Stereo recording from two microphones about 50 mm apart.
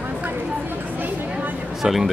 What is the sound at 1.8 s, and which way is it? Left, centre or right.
Speech, centre.